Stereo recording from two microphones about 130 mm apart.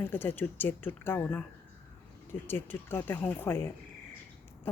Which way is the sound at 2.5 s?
15° left (ahead or behind).